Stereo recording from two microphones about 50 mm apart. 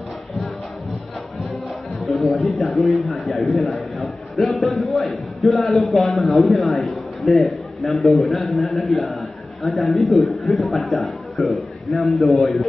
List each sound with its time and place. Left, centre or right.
2.0 s a man's voice: centre